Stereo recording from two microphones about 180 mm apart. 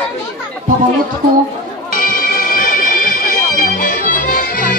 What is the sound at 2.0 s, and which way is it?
Music, 50° left (ahead or behind).